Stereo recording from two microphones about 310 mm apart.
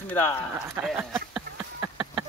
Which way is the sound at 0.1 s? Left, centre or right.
Centre.